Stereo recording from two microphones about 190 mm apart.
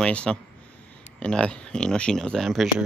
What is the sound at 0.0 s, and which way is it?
Speech, 5° left (ahead or behind).